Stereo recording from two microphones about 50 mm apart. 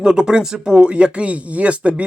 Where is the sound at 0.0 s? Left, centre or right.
Centre.